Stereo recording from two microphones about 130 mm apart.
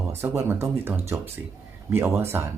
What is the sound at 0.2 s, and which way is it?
Speech, 20° right (ahead or behind).